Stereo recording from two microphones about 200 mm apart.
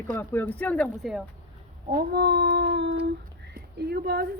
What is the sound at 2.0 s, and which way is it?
Speech, 55° right (ahead or behind).